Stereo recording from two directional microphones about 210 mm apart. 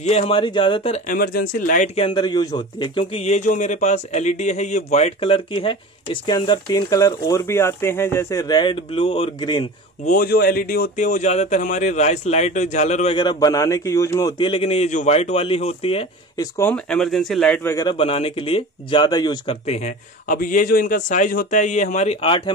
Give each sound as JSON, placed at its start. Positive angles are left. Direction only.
{"t": 0.0, "sound": "speech", "side_deg": 30}
{"t": 1.1, "sound": "speech", "side_deg": 45}
{"t": 2.0, "sound": "speech", "side_deg": 20}
{"t": 10.0, "sound": "speech", "side_deg": 45}
{"t": 16.5, "sound": "speech", "side_deg": 5}
{"t": 17.9, "sound": "speech", "side_deg": 25}